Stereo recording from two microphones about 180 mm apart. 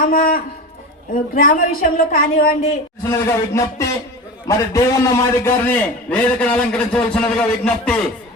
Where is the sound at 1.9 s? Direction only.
55° left (ahead or behind).